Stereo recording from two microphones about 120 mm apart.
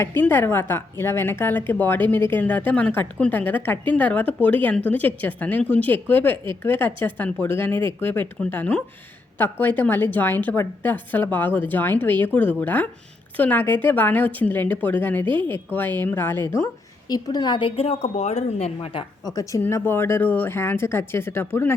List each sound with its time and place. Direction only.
0.0 s a woman's voice: 20° left (ahead or behind)
17.1 s a woman's voice: 35° left (ahead or behind); by 18.9 s 65° left (ahead or behind)
19.2 s speech: 30° left (ahead or behind)